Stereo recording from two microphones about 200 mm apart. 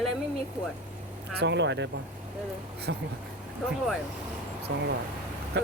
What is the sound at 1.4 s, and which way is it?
Speech, 60° right (ahead or behind).